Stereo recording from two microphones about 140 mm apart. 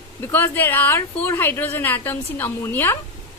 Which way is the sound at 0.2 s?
15° left (ahead or behind).